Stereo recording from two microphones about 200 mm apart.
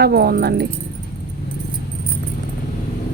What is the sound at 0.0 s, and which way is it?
Speech, 50° right (ahead or behind).